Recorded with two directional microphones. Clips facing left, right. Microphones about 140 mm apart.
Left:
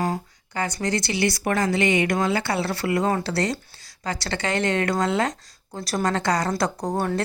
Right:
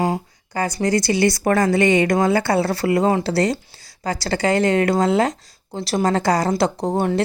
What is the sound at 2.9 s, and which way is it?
Speech, 25° right (ahead or behind).